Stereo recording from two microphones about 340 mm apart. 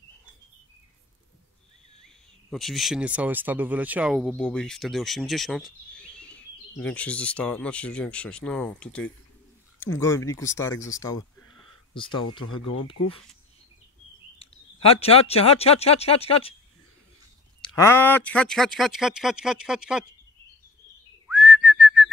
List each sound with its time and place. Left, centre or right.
2.5 s speech: centre
14.8 s speech: centre
17.6 s speech: centre
21.3 s whistling: centre